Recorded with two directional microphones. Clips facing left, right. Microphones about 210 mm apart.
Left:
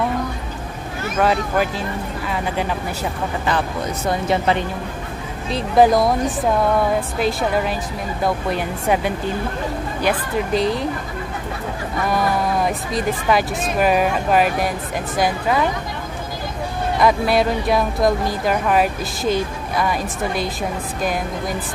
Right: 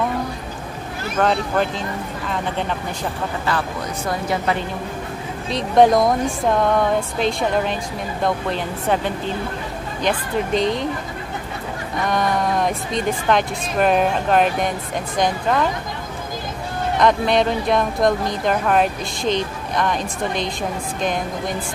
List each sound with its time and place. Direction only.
1.1 s a woman's voice: 5° left (ahead or behind)
4.3 s speech: 25° left (ahead or behind)
5.5 s a woman's voice: 5° left (ahead or behind)
12.1 s speech: 5° left (ahead or behind)
17.0 s speech: 5° left (ahead or behind)